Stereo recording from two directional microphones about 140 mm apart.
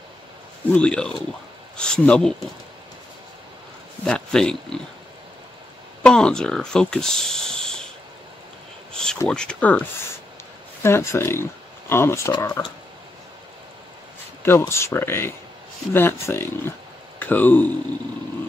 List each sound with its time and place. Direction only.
0.7 s speech: 5° left (ahead or behind)
4.0 s speech: 5° left (ahead or behind)
6.0 s speech: 5° left (ahead or behind)
8.9 s a sound: 5° left (ahead or behind)
9.3 s speech: 5° left (ahead or behind); by 12.5 s 25° left (ahead or behind)
14.6 s speech: 20° left (ahead or behind)